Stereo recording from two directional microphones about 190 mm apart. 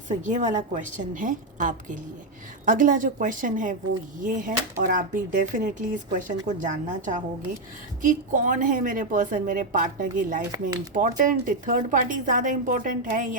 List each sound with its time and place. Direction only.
0.2 s a woman's voice: 40° right (ahead or behind)